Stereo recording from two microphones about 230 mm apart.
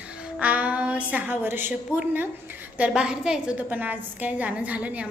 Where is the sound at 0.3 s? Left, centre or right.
Centre.